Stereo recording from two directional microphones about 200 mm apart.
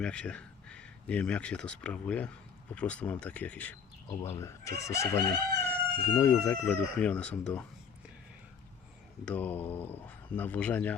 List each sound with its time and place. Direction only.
0.0 s speech: 5° left (ahead or behind)
2.7 s chicken: 5° left (ahead or behind)
7.0 s speech: 5° left (ahead or behind)
9.2 s chicken: 10° left (ahead or behind)